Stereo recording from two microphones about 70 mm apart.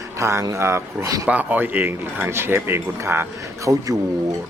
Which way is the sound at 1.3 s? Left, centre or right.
Right.